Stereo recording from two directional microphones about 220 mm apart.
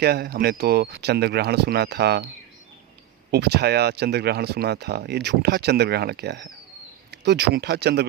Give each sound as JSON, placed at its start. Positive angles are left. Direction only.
{"t": 0.0, "sound": "speech", "side_deg": -45}
{"t": 3.3, "sound": "speech", "side_deg": -50}